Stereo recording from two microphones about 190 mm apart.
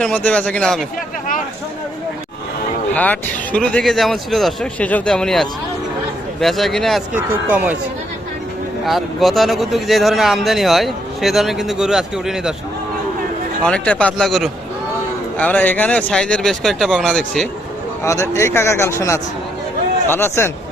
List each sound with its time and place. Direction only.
0.0 s a man's voice: 5° left (ahead or behind)
2.9 s a man's voice: 10° left (ahead or behind); by 7.8 s 10° right (ahead or behind)
8.8 s a man's voice: centre (ahead or behind)
13.6 s a man's voice: 5° left (ahead or behind)
18.0 s speech: 15° left (ahead or behind)